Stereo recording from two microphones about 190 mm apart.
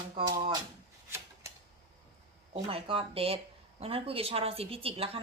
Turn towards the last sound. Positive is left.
turn(degrees=-30)  # may be behind; listen again after turning